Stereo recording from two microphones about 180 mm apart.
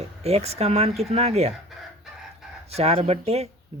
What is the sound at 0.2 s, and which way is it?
Speech, 35° right (ahead or behind).